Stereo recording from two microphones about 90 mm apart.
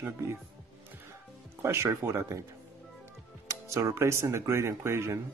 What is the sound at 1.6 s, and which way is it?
Speech, 30° right (ahead or behind).